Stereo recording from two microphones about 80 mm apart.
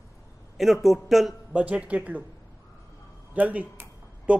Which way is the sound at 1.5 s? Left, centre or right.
Centre.